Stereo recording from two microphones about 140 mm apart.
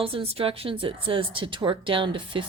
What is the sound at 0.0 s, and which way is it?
A woman's voice, 40° right (ahead or behind).